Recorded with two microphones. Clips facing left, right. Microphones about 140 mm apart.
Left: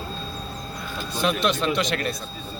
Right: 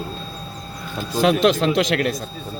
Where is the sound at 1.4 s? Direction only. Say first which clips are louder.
Right 6 dB; 90° right.